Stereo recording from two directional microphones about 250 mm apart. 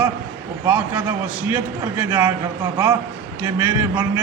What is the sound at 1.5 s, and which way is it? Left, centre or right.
Speech, centre.